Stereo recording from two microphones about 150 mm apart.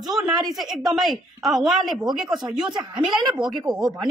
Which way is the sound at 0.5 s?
Centre (ahead or behind).